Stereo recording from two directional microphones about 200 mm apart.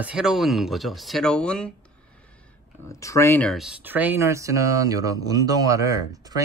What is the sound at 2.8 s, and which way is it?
Speech, 15° left (ahead or behind).